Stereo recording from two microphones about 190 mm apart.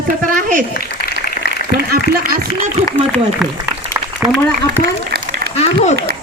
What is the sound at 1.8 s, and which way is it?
Speech, 55° right (ahead or behind).